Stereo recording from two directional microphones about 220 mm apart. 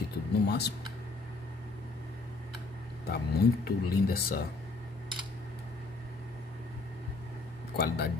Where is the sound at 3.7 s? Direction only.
45° left (ahead or behind).